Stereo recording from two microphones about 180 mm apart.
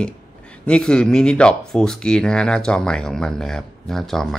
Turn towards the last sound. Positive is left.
turn(degrees=0)  # may be behind; listen again after turning